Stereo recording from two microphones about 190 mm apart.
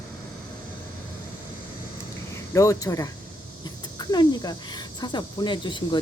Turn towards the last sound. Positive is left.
turn(degrees=25)  # may be behind; listen again after turning